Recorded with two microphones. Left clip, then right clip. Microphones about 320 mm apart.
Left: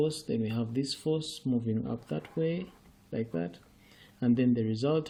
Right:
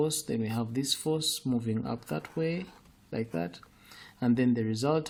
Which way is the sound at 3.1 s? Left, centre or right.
Centre.